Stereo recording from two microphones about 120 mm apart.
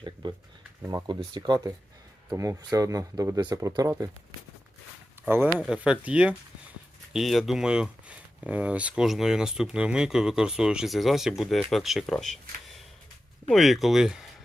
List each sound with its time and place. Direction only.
0.0 s a sound: 40° right (ahead or behind)
1.3 s speech: 35° right (ahead or behind)
5.3 s speech: 20° right (ahead or behind)